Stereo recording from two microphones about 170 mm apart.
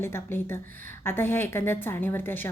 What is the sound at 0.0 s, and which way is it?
A woman's voice, 15° left (ahead or behind).